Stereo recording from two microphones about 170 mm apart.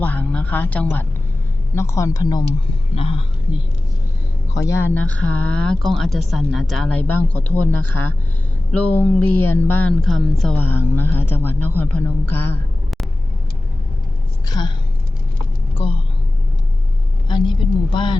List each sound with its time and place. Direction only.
0.0 s a woman's voice: 10° left (ahead or behind)
2.9 s speech: 35° left (ahead or behind)
4.6 s speech: 15° left (ahead or behind)
10.7 s speech: 15° left (ahead or behind)
14.4 s a woman's voice: 25° left (ahead or behind)
15.8 s speech: 35° left (ahead or behind)
17.2 s speech: 25° left (ahead or behind)